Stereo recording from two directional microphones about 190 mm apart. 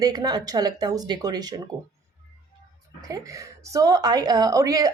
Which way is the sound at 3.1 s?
15° right (ahead or behind).